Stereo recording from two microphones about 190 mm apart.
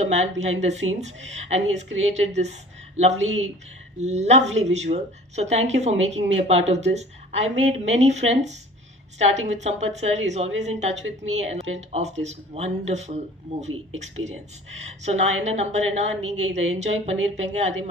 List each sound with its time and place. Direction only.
0.0 s a woman's voice: 35° right (ahead or behind)